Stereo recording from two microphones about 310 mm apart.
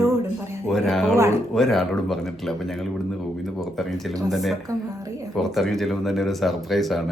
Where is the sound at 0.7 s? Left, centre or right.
Centre.